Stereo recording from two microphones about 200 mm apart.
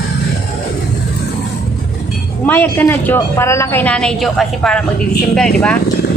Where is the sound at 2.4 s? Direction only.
10° left (ahead or behind).